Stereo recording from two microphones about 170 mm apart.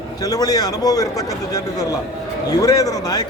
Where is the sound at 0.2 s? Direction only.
20° left (ahead or behind).